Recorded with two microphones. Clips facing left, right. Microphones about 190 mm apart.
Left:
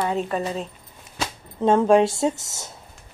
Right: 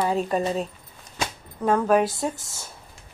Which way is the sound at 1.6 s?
25° left (ahead or behind).